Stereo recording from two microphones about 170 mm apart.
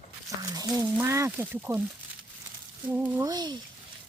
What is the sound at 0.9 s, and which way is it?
Speech, 15° right (ahead or behind).